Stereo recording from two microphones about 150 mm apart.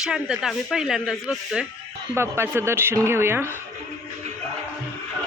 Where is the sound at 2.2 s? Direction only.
15° right (ahead or behind).